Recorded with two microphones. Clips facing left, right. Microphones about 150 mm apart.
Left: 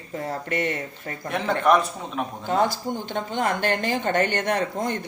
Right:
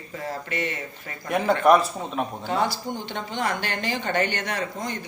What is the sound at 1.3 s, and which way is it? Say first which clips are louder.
Speech: right 2 dB; 10° right (ahead or behind).